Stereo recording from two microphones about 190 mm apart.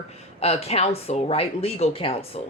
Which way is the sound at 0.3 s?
35° left (ahead or behind).